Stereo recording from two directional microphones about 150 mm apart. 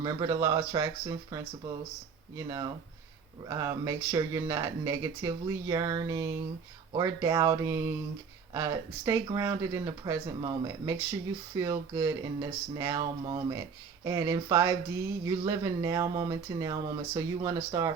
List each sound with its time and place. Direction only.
0.0 s speech: 25° right (ahead or behind)